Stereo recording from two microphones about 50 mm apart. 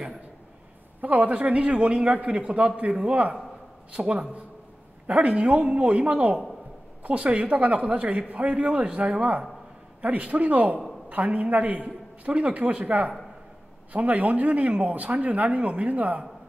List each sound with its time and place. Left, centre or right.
1.0 s speech: right